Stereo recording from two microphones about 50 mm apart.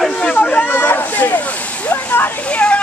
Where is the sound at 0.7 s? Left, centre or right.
Left.